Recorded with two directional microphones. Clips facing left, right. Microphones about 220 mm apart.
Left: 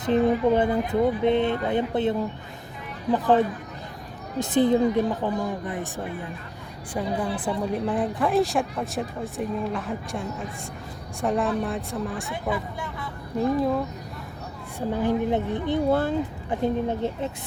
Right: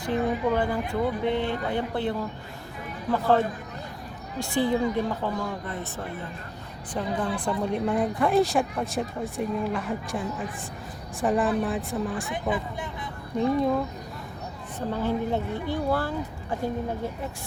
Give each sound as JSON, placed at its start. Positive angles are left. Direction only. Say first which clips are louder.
{"t": 0.0, "sound": "speech", "louder": "left 5 dB", "side_deg": 20}
{"t": 6.9, "sound": "speech", "louder": "left 1 dB", "side_deg": 5}
{"t": 12.3, "sound": "speech", "louder": "even", "side_deg": -20}
{"t": 13.6, "sound": "speech", "louder": "even", "side_deg": 0}
{"t": 14.8, "sound": "speech", "louder": "left 3 dB", "side_deg": 15}